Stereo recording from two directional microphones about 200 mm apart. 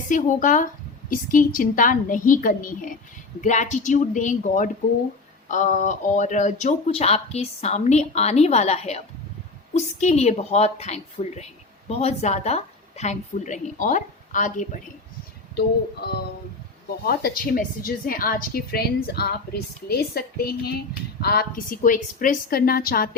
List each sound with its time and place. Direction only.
0.1 s a woman's voice: 40° left (ahead or behind)
17.0 s a woman's voice: 50° left (ahead or behind)